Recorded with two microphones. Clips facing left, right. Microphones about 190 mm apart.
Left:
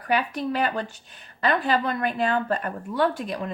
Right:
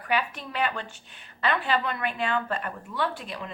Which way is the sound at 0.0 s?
40° left (ahead or behind).